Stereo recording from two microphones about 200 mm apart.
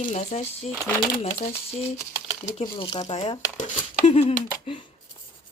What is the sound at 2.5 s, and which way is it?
Speech, 30° left (ahead or behind).